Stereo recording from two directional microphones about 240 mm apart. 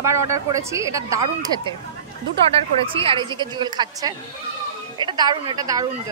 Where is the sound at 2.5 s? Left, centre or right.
Right.